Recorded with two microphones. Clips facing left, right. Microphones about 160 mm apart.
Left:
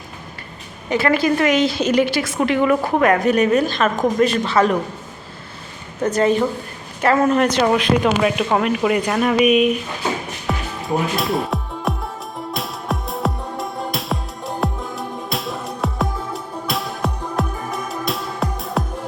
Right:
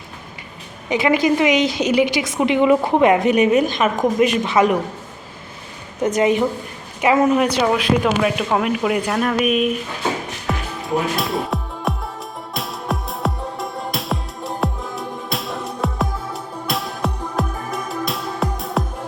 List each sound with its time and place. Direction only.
0.9 s a woman's voice: 15° right (ahead or behind)
6.0 s a woman's voice: 15° right (ahead or behind); by 9.7 s centre (ahead or behind)
10.4 s music: centre (ahead or behind)